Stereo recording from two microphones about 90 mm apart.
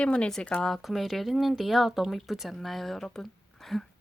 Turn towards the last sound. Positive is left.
turn(degrees=5)  # may be behind; listen again after turning